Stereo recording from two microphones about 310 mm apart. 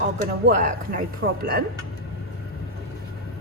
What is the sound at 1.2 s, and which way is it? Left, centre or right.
Speech, right.